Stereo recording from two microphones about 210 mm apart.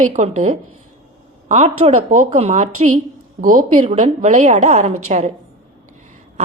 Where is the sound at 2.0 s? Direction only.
40° right (ahead or behind).